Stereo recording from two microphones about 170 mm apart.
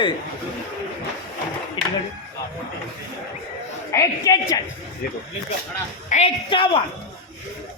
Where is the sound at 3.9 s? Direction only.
20° left (ahead or behind).